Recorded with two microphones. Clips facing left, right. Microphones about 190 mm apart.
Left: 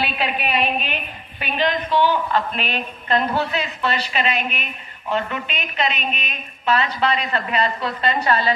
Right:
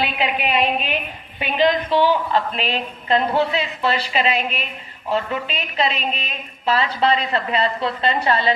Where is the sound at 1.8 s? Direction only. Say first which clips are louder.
Right 1 dB; 30° right (ahead or behind).